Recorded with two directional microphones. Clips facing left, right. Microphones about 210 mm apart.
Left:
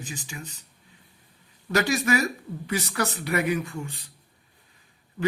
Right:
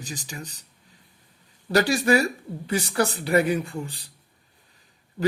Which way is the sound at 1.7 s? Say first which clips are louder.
Right 3 dB; 30° right (ahead or behind).